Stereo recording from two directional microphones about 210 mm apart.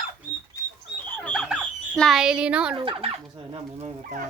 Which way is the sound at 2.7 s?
25° right (ahead or behind).